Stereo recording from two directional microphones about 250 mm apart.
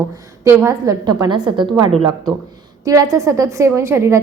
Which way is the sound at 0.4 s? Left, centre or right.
Centre.